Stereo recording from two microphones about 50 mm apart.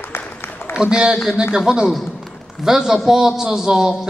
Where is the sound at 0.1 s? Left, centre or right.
Left.